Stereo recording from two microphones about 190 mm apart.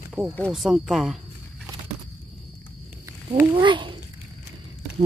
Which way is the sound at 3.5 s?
25° right (ahead or behind).